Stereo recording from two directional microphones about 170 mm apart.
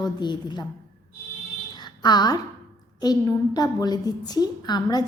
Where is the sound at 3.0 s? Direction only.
25° left (ahead or behind).